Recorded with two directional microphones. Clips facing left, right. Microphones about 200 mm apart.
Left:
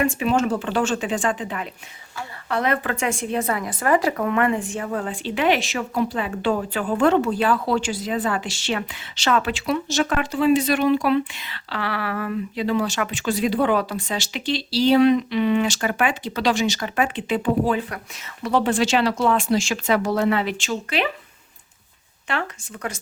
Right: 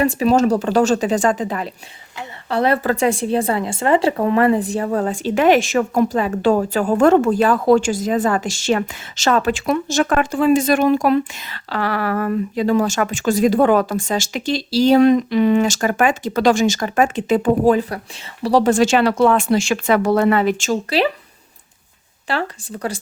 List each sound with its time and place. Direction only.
0.0 s a woman's voice: 35° right (ahead or behind)
22.3 s a woman's voice: 35° right (ahead or behind)